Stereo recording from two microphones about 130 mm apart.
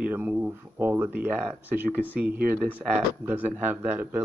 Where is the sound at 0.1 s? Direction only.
15° right (ahead or behind).